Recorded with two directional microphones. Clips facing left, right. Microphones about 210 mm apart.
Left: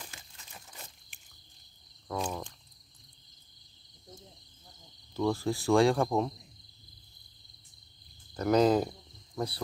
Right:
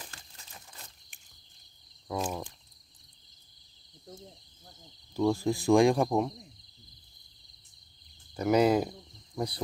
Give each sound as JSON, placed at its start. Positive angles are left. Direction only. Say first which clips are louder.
{"t": 2.0, "sound": "cricket", "louder": "right 1 dB", "side_deg": -5}
{"t": 5.1, "sound": "speech", "louder": "right 3 dB", "side_deg": -15}
{"t": 8.4, "sound": "speech", "louder": "even", "side_deg": -10}